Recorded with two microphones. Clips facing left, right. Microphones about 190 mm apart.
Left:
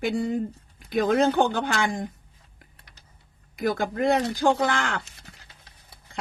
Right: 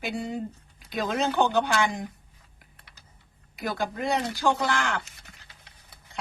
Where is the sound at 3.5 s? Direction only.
50° left (ahead or behind).